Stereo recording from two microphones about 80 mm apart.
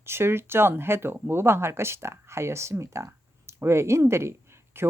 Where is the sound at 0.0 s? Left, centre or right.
Right.